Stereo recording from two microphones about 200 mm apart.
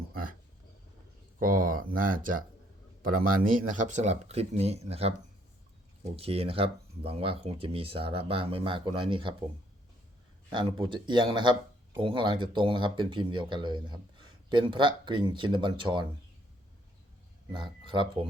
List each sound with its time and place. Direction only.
0.1 s a sound: 45° right (ahead or behind)
1.4 s speech: 45° right (ahead or behind); by 9.3 s 25° right (ahead or behind)
10.5 s speech: 25° right (ahead or behind)
17.5 s speech: 25° right (ahead or behind)